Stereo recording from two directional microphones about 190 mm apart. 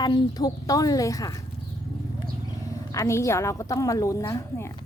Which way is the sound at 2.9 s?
15° left (ahead or behind).